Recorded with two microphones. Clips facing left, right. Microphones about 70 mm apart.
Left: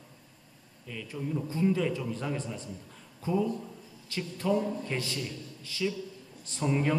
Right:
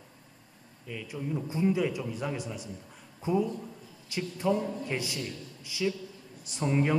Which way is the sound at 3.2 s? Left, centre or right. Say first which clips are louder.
Right 1 dB; centre.